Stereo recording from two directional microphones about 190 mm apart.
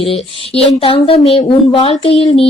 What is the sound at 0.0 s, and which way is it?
A woman's voice, 30° left (ahead or behind).